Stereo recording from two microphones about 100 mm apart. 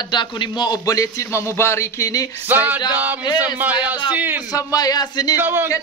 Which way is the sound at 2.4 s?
20° right (ahead or behind).